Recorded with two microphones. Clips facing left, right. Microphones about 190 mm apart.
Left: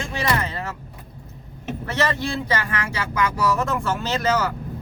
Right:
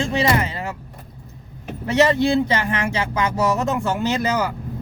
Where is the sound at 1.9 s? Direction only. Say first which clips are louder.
Right 8 dB; 20° right (ahead or behind).